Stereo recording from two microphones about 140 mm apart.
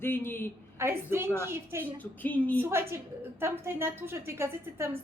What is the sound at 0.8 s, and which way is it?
A woman's voice, 20° right (ahead or behind).